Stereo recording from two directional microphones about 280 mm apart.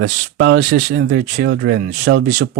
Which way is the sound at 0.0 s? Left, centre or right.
Right.